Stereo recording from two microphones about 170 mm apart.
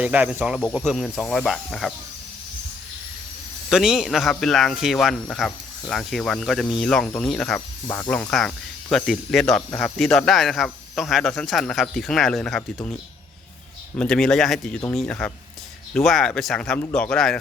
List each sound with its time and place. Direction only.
0.0 s speech: 5° right (ahead or behind)
3.7 s speech: centre (ahead or behind)
7.9 s speech: 20° left (ahead or behind)
8.1 s speech: 5° left (ahead or behind)